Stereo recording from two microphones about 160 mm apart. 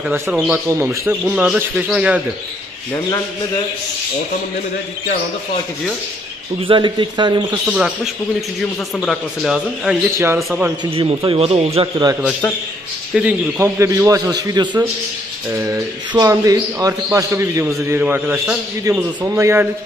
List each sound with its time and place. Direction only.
0.5 s a man's voice: 15° right (ahead or behind)
6.6 s a man's voice: 30° right (ahead or behind)
7.6 s a man's voice: 5° right (ahead or behind)
10.1 s a man's voice: 15° right (ahead or behind)
10.8 s a man's voice: 35° right (ahead or behind)
13.1 s a man's voice: 10° right (ahead or behind)